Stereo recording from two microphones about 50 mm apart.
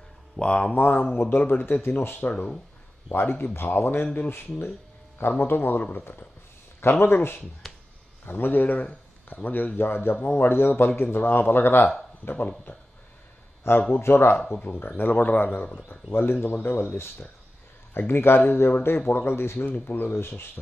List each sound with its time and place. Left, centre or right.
0.4 s speech: left
0.7 s a man's voice: left
1.8 s a man's voice: left
6.8 s speech: left
7.6 s a sound: centre
8.3 s speech: left
9.8 s a man's voice: left
13.9 s speech: left
14.5 s a man's voice: left
19.7 s speech: left
20.2 s speech: left